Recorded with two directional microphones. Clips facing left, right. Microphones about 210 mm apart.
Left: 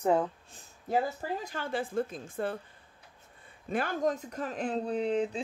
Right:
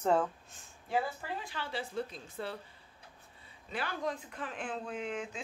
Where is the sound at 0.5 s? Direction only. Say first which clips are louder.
Left 5 dB; 40° left (ahead or behind).